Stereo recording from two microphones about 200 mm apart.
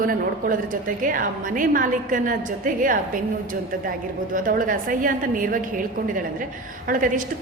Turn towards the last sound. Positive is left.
turn(degrees=-40)  # may be behind; listen again after turning